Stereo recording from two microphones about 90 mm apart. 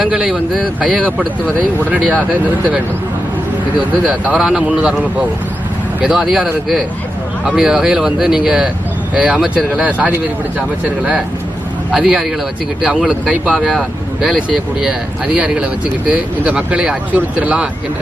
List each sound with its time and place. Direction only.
0.0 s speech: 5° right (ahead or behind)
4.0 s speech: 5° right (ahead or behind)
9.8 s speech: 15° right (ahead or behind)
11.9 s speech: 5° right (ahead or behind)